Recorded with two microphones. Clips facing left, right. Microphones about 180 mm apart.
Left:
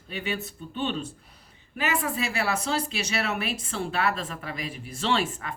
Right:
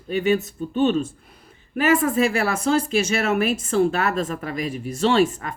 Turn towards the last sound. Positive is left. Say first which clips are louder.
# right 8 dB
turn(degrees=-40)  # may be behind; listen again after turning